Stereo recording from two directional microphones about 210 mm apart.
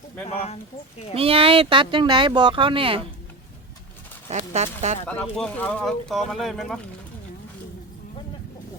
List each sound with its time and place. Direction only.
0.3 s speech: 30° left (ahead or behind)
1.1 s speech: 25° right (ahead or behind)
4.3 s speech: 30° right (ahead or behind)
5.2 s speech: 5° left (ahead or behind)